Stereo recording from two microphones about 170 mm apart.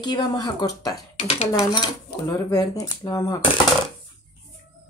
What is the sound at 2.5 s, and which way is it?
Speech, 20° left (ahead or behind).